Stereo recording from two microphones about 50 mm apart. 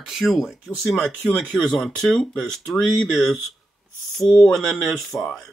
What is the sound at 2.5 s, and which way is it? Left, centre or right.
Speech, centre.